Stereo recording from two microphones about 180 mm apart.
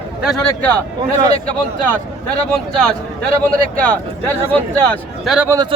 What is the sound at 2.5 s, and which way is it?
Speech, 5° left (ahead or behind).